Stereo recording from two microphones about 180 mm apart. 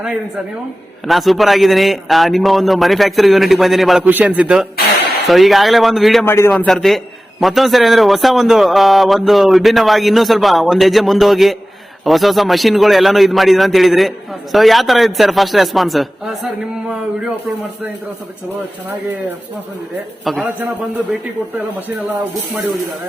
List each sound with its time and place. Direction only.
1.0 s a man's voice: centre (ahead or behind)
6.2 s a man's voice: 15° left (ahead or behind)
20.2 s a man's voice: centre (ahead or behind)